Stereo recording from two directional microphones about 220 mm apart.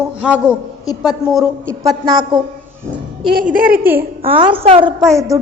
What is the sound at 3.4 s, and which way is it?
Speech, 40° right (ahead or behind).